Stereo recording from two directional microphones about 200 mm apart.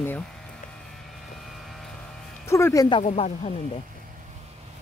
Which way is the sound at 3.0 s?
30° left (ahead or behind).